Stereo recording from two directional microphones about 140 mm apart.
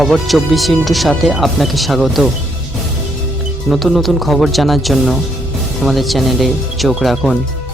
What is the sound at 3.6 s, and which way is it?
Speech, centre (ahead or behind).